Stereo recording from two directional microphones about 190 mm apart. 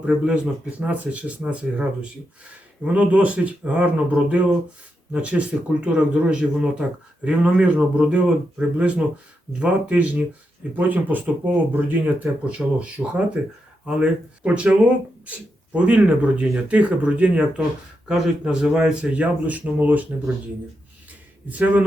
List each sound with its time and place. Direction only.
0.0 s speech: 5° right (ahead or behind)
21.4 s speech: 10° right (ahead or behind)